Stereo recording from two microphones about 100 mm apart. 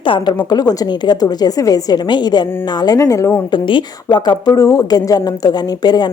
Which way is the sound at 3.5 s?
55° left (ahead or behind).